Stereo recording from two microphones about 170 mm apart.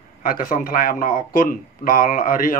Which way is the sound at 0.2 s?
55° left (ahead or behind).